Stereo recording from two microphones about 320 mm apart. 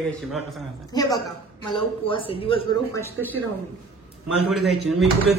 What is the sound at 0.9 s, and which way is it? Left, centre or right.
A man's voice, centre.